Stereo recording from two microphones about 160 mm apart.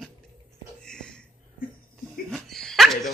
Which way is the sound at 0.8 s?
5° left (ahead or behind).